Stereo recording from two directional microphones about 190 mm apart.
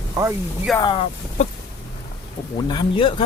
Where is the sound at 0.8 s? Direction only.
25° left (ahead or behind).